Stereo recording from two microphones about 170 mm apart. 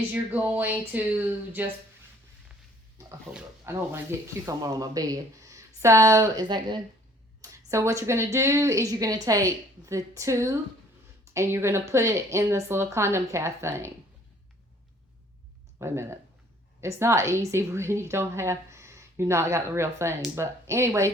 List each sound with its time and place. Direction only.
0.1 s a woman's voice: 10° right (ahead or behind)
3.3 s a woman's voice: 15° right (ahead or behind)
15.8 s a woman's voice: 15° right (ahead or behind)